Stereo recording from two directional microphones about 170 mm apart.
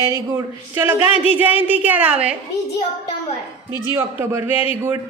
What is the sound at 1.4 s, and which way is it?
Speech, 10° right (ahead or behind).